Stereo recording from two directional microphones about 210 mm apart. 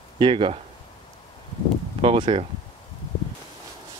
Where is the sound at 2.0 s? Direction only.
25° right (ahead or behind).